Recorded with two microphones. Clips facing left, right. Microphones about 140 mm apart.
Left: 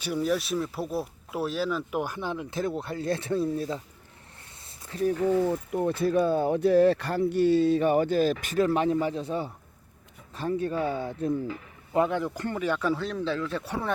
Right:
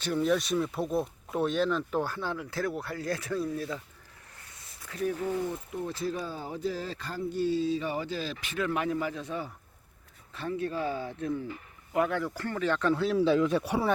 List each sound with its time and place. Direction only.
0.0 s speech: 5° left (ahead or behind); by 3.8 s 30° left (ahead or behind)
4.6 s a sound: 30° left (ahead or behind)
5.5 s speech: 55° left (ahead or behind); by 11.3 s 35° left (ahead or behind)
11.9 s speech: 20° left (ahead or behind)
13.0 s speech: 5° right (ahead or behind)